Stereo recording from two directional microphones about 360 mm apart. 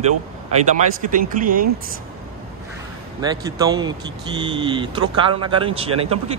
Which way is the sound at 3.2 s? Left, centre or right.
Centre.